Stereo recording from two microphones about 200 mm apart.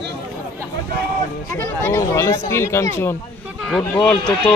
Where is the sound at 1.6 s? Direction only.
15° left (ahead or behind).